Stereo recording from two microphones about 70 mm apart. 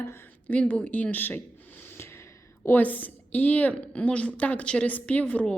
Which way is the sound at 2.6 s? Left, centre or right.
Left.